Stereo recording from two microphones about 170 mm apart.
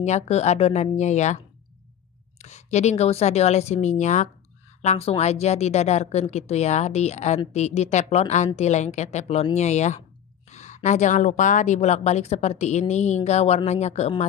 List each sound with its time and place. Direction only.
0.0 s speech: 40° left (ahead or behind)
2.4 s a woman's voice: 40° left (ahead or behind)
10.5 s a sound: 45° left (ahead or behind)
10.8 s a woman's voice: 45° left (ahead or behind)